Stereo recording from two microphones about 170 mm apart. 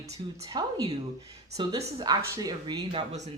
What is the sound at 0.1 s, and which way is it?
Speech, 20° right (ahead or behind).